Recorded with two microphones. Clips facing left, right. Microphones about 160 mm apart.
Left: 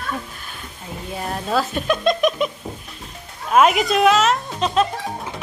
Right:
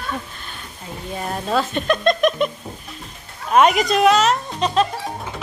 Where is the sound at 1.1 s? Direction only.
Centre (ahead or behind).